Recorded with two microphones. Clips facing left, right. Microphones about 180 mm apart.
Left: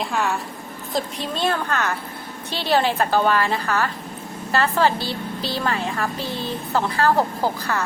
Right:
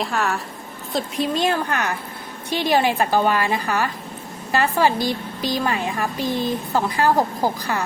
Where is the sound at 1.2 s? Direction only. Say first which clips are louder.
Right 6 dB; 15° right (ahead or behind).